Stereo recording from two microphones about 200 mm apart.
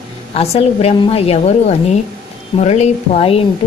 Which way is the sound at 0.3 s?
30° left (ahead or behind).